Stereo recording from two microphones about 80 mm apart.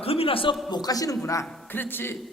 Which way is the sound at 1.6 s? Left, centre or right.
Left.